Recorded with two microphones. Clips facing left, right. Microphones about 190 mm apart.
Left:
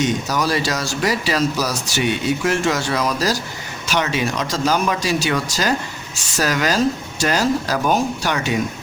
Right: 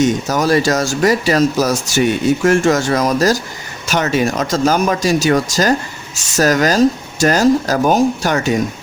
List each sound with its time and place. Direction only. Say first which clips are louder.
0.0 s speech: right 5 dB; 45° right (ahead or behind)